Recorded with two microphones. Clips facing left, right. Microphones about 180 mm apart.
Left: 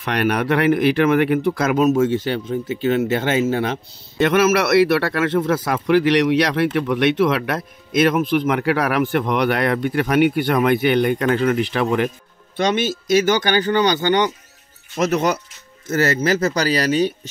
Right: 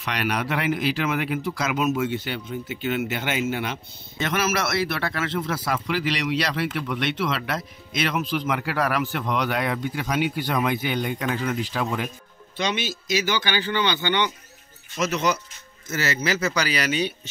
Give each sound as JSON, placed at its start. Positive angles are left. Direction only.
{"t": 0.0, "sound": "a man's voice", "side_deg": 55}
{"t": 1.8, "sound": "speech", "side_deg": 40}
{"t": 4.2, "sound": "a man's voice", "side_deg": 60}
{"t": 12.5, "sound": "speech", "side_deg": 50}
{"t": 15.0, "sound": "a man's voice", "side_deg": 55}